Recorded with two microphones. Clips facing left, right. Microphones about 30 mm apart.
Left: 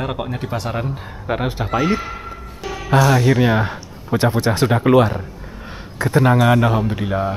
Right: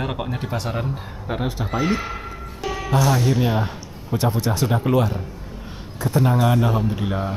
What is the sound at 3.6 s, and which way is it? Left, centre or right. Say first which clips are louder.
A man's voice: left 4 dB; left.